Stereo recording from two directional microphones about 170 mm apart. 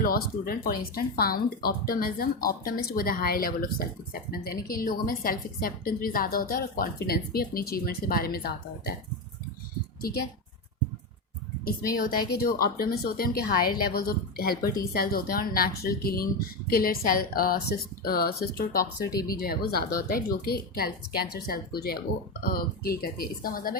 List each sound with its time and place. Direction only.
0.0 s speech: 60° left (ahead or behind)
10.0 s speech: 60° left (ahead or behind)
12.3 s speech: 65° left (ahead or behind)